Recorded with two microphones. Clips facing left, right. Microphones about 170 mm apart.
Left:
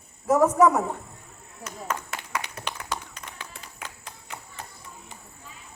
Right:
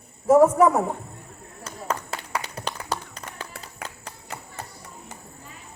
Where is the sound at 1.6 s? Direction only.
30° right (ahead or behind).